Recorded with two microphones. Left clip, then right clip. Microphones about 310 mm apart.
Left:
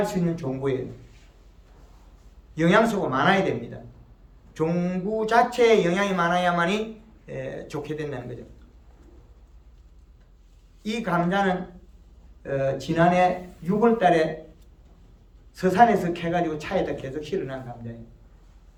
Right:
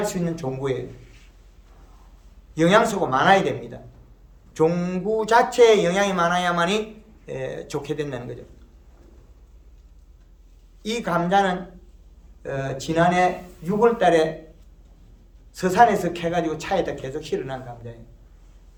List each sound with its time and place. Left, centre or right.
0.0 s speech: centre
2.6 s speech: centre
4.5 s speech: centre
10.8 s speech: centre
15.5 s speech: right